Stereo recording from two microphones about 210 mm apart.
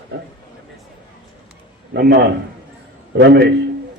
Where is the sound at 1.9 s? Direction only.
50° right (ahead or behind).